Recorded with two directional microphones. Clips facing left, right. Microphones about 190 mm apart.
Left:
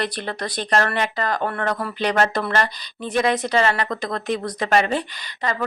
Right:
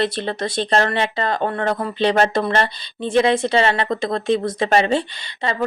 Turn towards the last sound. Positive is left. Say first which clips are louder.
# right 3 dB
turn(degrees=-25)  # may be behind; listen again after turning